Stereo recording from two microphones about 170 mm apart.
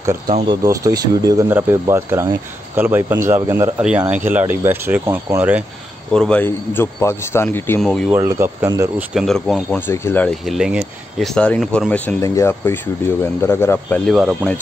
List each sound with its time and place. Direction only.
0.3 s speech: 25° right (ahead or behind)
6.1 s a man's voice: 5° left (ahead or behind)
8.1 s speech: 15° right (ahead or behind)
9.1 s speech: centre (ahead or behind)
10.5 s a sound: 5° right (ahead or behind)
11.3 s speech: 5° left (ahead or behind)
12.2 s a man's voice: 15° left (ahead or behind)
14.1 s speech: centre (ahead or behind)